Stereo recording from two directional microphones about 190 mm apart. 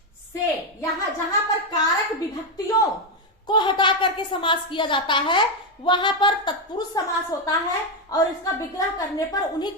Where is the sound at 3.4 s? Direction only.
25° left (ahead or behind).